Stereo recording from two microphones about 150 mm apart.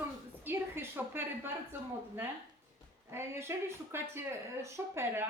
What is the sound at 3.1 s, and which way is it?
Speech, 15° right (ahead or behind).